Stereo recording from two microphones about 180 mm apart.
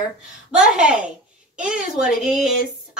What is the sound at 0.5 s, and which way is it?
A woman's voice, 5° right (ahead or behind).